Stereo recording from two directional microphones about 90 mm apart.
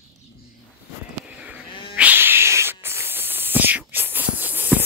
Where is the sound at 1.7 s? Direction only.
70° left (ahead or behind).